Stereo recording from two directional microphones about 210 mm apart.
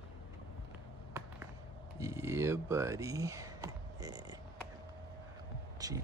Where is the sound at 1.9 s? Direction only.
15° right (ahead or behind).